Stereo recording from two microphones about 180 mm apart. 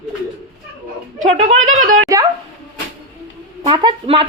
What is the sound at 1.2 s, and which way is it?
Speech, 40° right (ahead or behind).